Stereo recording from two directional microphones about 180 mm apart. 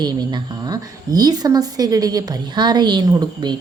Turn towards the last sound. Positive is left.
turn(degrees=-25)  # may be behind; listen again after turning